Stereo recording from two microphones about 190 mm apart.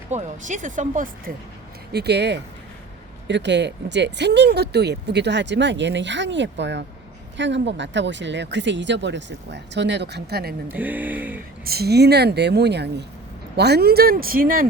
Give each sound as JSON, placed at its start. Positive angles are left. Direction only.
{"t": 0.1, "sound": "speech", "side_deg": -40}
{"t": 1.9, "sound": "speech", "side_deg": -60}
{"t": 10.7, "sound": "speech", "side_deg": -10}
{"t": 11.6, "sound": "speech", "side_deg": -55}